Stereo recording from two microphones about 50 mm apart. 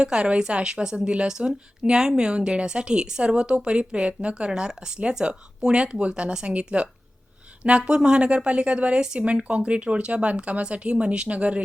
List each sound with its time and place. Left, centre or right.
0.0 s a woman's voice: centre
9.2 s a woman's voice: right